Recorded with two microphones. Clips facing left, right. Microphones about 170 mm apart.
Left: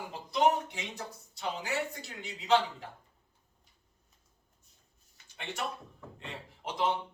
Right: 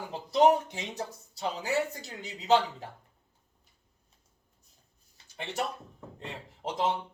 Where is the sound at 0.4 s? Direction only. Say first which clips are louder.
Right 4 dB; 40° right (ahead or behind).